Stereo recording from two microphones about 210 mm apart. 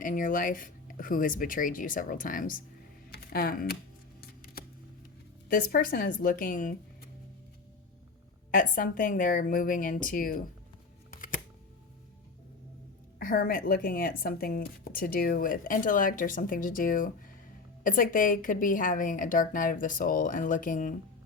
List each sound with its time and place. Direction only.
0.0 s a woman's voice: 40° left (ahead or behind)
4.6 s a sound: 45° left (ahead or behind)
5.5 s a woman's voice: 45° left (ahead or behind)
8.4 s a woman's voice: 40° left (ahead or behind)
11.1 s shuffling cards: 40° left (ahead or behind)
13.1 s a woman's voice: 45° left (ahead or behind)